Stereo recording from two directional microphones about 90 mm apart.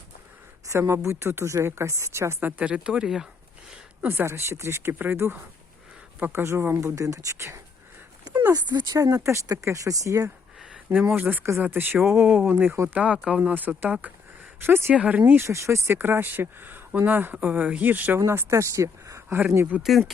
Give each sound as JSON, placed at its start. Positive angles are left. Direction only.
{"t": 0.7, "sound": "speech", "side_deg": -30}
{"t": 2.6, "sound": "speech", "side_deg": -10}
{"t": 4.0, "sound": "speech", "side_deg": -25}
{"t": 8.5, "sound": "speech", "side_deg": -50}
{"t": 11.1, "sound": "speech", "side_deg": -20}
{"t": 13.0, "sound": "speech", "side_deg": -15}
{"t": 14.9, "sound": "speech", "side_deg": -15}
{"t": 15.3, "sound": "speech", "side_deg": -30}
{"t": 18.2, "sound": "speech", "side_deg": -30}
{"t": 19.8, "sound": "speech", "side_deg": 0}